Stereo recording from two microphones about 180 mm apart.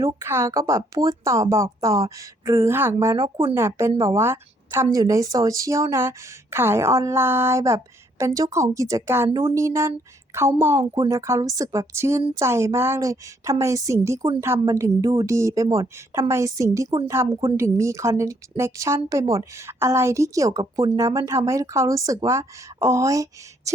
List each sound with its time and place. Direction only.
0.0 s a woman's voice: 15° right (ahead or behind)